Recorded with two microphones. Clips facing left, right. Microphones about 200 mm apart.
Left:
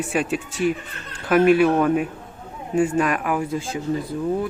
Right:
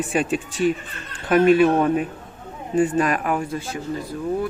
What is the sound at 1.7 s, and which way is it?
Speech, 25° right (ahead or behind).